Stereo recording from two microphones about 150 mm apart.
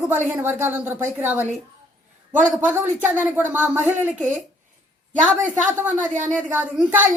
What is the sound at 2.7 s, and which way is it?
A woman's voice, 15° right (ahead or behind).